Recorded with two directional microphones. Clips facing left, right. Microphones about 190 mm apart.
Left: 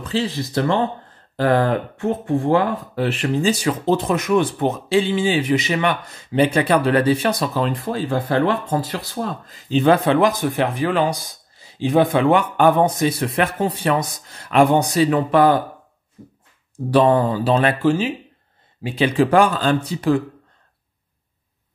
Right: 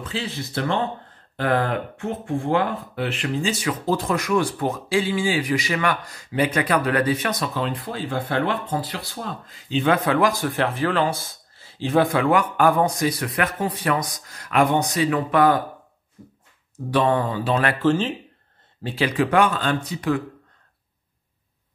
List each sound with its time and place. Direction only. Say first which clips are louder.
0.0 s speech: left 7 dB; 35° left (ahead or behind)
3.8 s speech: left 3 dB; 20° left (ahead or behind); by 9.9 s 40° left (ahead or behind)
10.0 s speech: left 4 dB; 25° left (ahead or behind)
16.7 s speech: left 5 dB; 35° left (ahead or behind)
17.8 s speech: left 2 dB; 10° left (ahead or behind)
19.0 s speech: left 4 dB; 30° left (ahead or behind)